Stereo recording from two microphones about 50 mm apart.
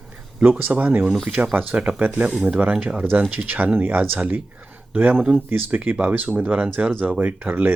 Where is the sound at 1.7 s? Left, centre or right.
Right.